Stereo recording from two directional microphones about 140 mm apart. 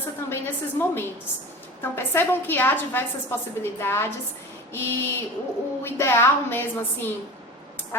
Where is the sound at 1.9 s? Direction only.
15° left (ahead or behind).